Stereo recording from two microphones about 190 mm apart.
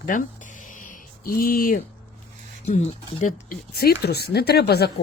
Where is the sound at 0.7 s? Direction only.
45° left (ahead or behind).